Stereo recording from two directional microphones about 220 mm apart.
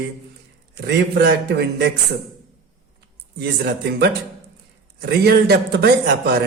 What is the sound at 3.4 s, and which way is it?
A man's voice, 45° right (ahead or behind).